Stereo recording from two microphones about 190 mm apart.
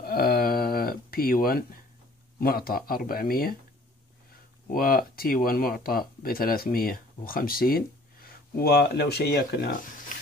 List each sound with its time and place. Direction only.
0.0 s a sound: 55° left (ahead or behind)
2.4 s speech: 50° left (ahead or behind)
4.6 s speech: 50° left (ahead or behind)